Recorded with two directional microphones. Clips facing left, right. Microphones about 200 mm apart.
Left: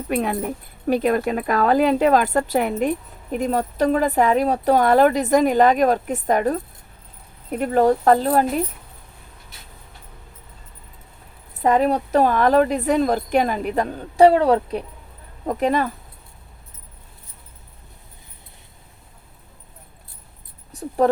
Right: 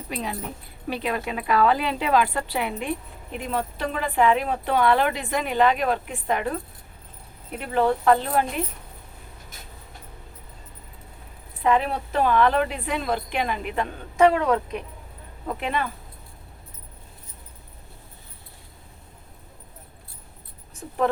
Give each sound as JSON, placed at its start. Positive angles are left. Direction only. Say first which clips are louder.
{"t": 0.1, "sound": "a woman's voice", "louder": "left 9 dB", "side_deg": 55}
{"t": 0.9, "sound": "speech", "louder": "left 9 dB", "side_deg": 45}
{"t": 11.6, "sound": "speech", "louder": "left 5 dB", "side_deg": 40}
{"t": 20.7, "sound": "speech", "louder": "left 5 dB", "side_deg": 35}